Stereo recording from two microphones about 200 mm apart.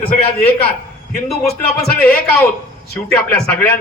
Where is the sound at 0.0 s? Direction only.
30° left (ahead or behind).